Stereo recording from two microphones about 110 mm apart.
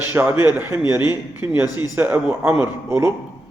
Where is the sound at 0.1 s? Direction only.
20° right (ahead or behind).